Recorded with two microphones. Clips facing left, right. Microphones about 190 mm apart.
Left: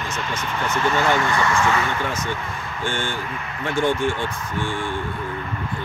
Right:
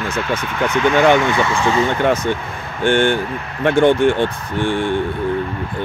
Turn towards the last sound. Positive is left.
turn(degrees=-65)  # may be behind; listen again after turning